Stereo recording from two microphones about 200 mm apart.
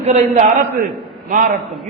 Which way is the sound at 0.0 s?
35° right (ahead or behind).